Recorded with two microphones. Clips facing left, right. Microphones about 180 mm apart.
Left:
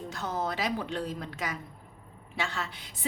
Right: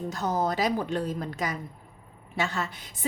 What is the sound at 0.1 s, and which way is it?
A woman's voice, 40° right (ahead or behind).